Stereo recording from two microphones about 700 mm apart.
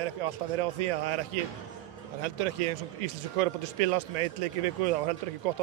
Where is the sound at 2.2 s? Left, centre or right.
Right.